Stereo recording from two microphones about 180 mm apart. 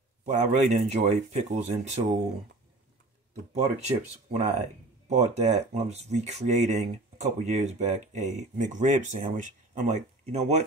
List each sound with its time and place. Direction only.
0.2 s speech: 45° right (ahead or behind)
3.5 s speech: 35° right (ahead or behind)